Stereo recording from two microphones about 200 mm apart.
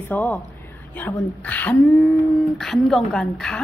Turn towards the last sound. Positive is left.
turn(degrees=5)  # may be behind; listen again after turning